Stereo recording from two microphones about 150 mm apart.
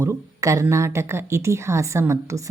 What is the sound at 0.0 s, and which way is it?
A woman's voice, 20° right (ahead or behind).